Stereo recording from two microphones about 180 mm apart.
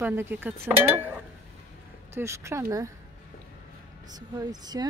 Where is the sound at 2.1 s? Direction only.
15° right (ahead or behind).